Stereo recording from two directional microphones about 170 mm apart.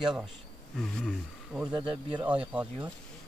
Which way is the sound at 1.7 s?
25° right (ahead or behind).